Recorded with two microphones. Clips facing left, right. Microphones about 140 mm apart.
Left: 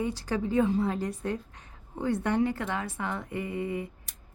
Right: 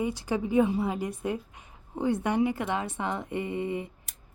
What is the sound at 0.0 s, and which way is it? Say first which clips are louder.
A woman's voice: right 1 dB; 15° right (ahead or behind).